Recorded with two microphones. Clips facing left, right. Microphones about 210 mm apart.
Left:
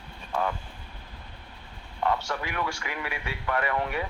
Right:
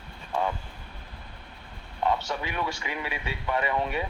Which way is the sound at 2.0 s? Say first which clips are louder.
Right 1 dB; 20° right (ahead or behind).